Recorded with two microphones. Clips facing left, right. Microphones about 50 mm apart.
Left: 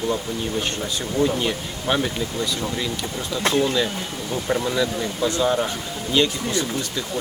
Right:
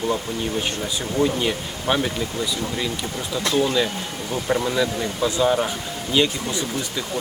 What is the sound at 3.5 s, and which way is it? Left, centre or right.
Speech, left.